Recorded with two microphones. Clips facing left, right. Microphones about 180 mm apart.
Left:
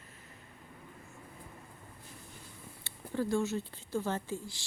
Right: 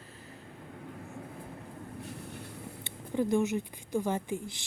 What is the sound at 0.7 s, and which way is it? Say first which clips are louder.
Vehicle: right 9 dB; 70° right (ahead or behind).